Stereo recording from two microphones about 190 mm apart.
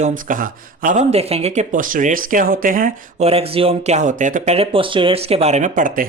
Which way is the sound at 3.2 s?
30° right (ahead or behind).